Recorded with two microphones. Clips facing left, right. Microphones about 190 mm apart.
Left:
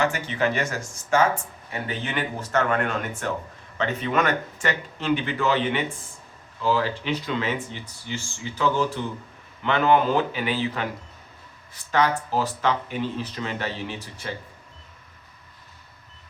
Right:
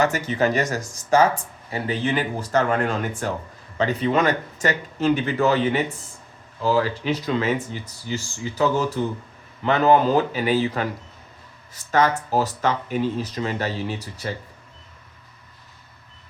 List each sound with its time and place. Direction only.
0.0 s speech: 40° right (ahead or behind)